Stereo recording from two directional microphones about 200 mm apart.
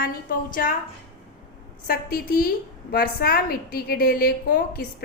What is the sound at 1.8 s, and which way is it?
A woman's voice, 45° left (ahead or behind).